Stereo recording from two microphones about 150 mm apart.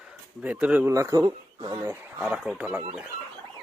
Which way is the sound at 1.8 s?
15° right (ahead or behind).